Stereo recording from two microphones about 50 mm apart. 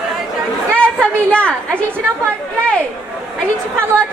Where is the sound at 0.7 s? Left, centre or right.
Left.